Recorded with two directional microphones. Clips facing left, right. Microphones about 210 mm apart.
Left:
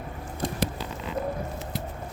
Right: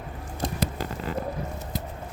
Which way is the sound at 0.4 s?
40° right (ahead or behind).